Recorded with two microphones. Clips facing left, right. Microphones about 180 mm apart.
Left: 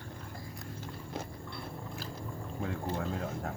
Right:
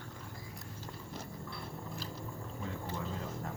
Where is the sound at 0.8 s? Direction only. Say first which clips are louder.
Left 5 dB; 60° left (ahead or behind).